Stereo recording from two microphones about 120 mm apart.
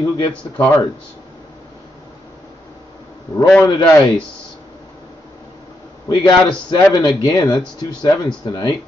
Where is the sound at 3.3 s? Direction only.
25° left (ahead or behind).